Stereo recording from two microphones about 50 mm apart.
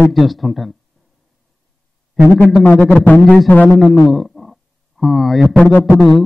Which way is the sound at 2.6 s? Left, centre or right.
Left.